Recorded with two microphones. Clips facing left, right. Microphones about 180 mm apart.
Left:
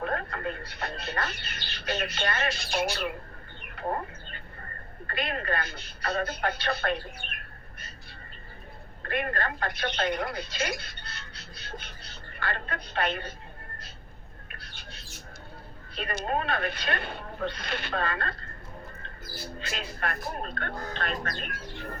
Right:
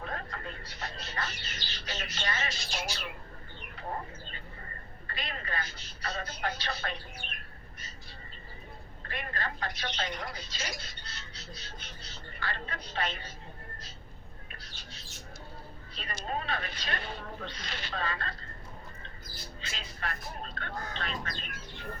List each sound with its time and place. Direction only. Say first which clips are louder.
0.0 s speech: left 8 dB; 60° left (ahead or behind)
9.0 s speech: left 8 dB; 60° left (ahead or behind)
14.5 s a sound: left 4 dB; 55° left (ahead or behind)
16.0 s speech: left 7 dB; 55° left (ahead or behind)
19.5 s speech: left 7 dB; 60° left (ahead or behind)